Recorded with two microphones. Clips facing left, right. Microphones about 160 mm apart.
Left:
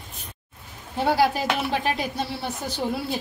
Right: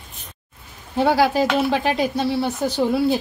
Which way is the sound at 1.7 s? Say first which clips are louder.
Right 5 dB; 90° right.